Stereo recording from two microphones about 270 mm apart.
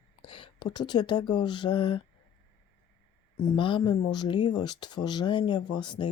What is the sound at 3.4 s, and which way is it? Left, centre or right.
Speech, centre.